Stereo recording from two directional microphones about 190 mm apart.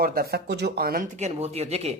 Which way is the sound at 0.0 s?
50° right (ahead or behind).